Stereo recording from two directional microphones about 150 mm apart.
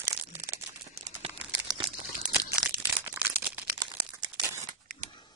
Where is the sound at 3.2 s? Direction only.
10° right (ahead or behind).